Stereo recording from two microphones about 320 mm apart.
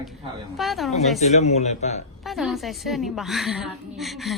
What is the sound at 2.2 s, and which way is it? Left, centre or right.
A woman's voice, centre.